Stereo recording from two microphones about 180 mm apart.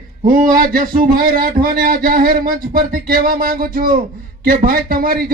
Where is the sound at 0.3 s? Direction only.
50° right (ahead or behind).